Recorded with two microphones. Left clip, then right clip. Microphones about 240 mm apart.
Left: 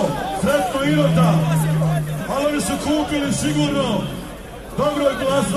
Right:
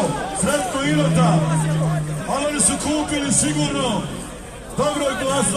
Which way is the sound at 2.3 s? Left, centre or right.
Right.